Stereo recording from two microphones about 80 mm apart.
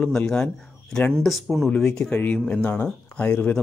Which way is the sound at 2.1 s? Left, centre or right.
Centre.